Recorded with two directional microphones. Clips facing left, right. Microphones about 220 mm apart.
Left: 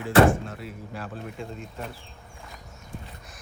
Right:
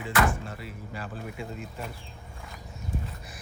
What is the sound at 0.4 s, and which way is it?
Speech, centre (ahead or behind).